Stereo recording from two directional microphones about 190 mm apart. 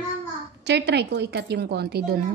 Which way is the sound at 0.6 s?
60° right (ahead or behind).